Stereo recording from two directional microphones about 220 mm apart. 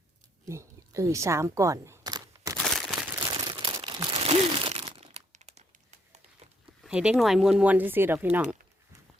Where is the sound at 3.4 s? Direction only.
20° right (ahead or behind).